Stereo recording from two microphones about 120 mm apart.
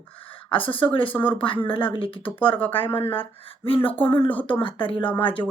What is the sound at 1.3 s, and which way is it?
Speech, 45° left (ahead or behind).